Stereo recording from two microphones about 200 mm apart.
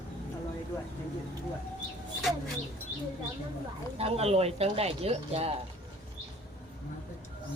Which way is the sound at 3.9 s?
30° right (ahead or behind).